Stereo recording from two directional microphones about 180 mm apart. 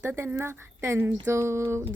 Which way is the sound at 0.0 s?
10° right (ahead or behind).